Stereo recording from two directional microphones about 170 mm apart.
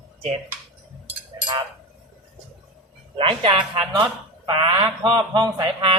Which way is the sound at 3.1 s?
30° right (ahead or behind).